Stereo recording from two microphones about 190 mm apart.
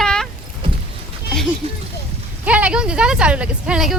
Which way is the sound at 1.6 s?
30° right (ahead or behind).